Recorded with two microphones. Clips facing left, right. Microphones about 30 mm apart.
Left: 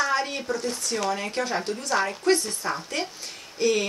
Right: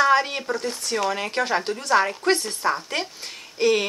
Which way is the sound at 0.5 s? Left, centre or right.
Right.